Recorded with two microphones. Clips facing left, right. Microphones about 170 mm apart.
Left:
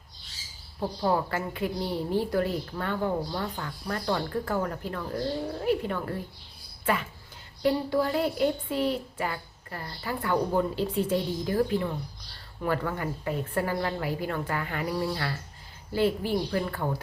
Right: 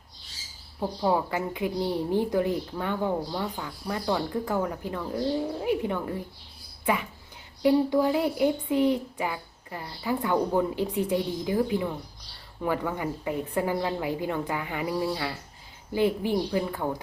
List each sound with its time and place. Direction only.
0.8 s a woman's voice: 10° right (ahead or behind)
7.6 s a woman's voice: 15° right (ahead or behind)